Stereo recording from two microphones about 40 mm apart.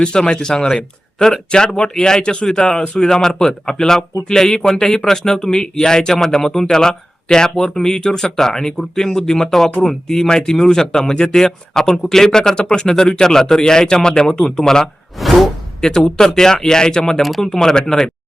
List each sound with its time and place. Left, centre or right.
0.0 s a man's voice: left
15.2 s whoosh: centre
16.0 s speech: centre